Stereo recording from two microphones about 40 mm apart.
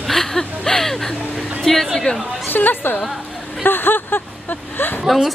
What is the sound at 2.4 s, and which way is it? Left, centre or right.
Speech, left.